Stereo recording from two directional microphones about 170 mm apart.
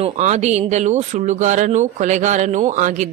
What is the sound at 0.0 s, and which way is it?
Speech, 40° right (ahead or behind).